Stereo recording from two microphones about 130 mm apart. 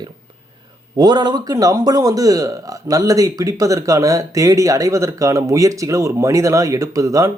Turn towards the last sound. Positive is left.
turn(degrees=-25)  # may be behind; listen again after turning